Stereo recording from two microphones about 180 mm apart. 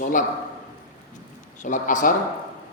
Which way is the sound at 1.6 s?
45° left (ahead or behind).